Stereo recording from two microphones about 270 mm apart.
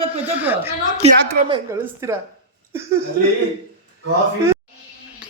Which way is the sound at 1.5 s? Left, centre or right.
Centre.